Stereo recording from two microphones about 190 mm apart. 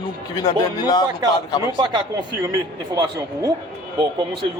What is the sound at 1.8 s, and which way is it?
Speech, 20° right (ahead or behind).